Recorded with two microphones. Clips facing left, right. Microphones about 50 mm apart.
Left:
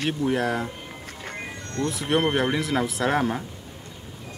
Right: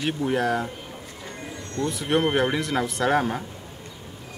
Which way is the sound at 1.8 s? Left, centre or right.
Centre.